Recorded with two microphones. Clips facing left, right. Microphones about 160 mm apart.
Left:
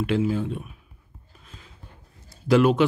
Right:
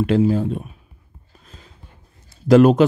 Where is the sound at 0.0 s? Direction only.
40° right (ahead or behind).